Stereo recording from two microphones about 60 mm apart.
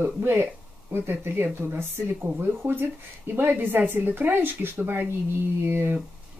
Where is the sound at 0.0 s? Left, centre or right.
Right.